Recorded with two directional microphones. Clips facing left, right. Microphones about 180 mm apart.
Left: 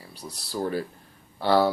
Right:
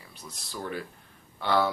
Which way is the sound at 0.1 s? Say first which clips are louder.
Left 7 dB; 35° left (ahead or behind).